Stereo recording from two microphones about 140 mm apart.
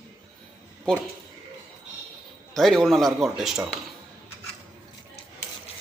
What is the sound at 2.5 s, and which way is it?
Speech, centre (ahead or behind).